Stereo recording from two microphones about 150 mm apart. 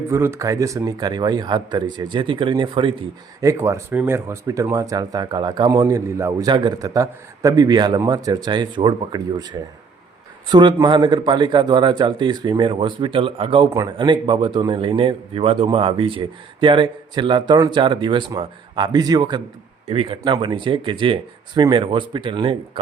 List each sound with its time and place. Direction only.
0.1 s speech: 20° right (ahead or behind); by 2.9 s 35° right (ahead or behind)
3.4 s speech: 20° right (ahead or behind)
10.5 s speech: 30° right (ahead or behind)
19.9 s speech: 40° right (ahead or behind)